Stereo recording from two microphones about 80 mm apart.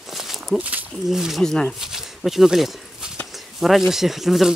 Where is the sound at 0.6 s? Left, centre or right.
Centre.